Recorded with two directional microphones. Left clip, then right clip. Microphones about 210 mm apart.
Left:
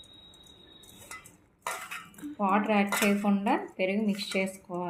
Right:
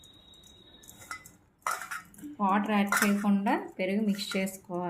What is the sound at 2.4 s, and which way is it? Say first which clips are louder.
Speech: left 1 dB; 30° right (ahead or behind).